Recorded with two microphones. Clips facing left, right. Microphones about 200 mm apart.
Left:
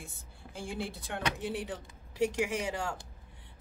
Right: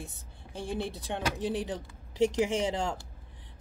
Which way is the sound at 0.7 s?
20° right (ahead or behind).